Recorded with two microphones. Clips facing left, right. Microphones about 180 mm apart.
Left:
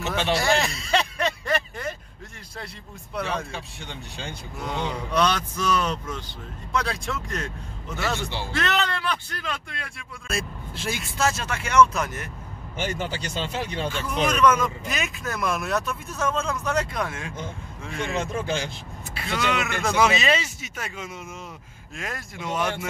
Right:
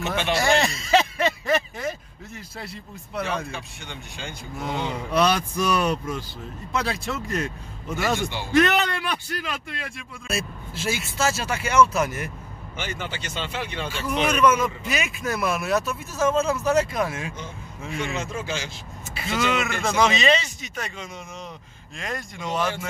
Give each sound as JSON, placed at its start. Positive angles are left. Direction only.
{"t": 0.2, "sound": "a sound", "side_deg": 0}
{"t": 4.7, "sound": "a man's voice", "side_deg": -5}
{"t": 12.7, "sound": "speech", "side_deg": 40}
{"t": 13.8, "sound": "a man's voice", "side_deg": -5}
{"t": 18.2, "sound": "speech", "side_deg": 55}
{"t": 19.1, "sound": "speech", "side_deg": 0}